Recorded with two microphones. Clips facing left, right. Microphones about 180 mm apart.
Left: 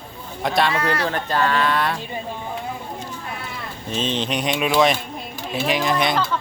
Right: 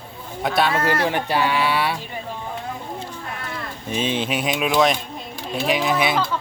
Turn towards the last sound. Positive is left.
turn(degrees=-5)  # may be behind; listen again after turning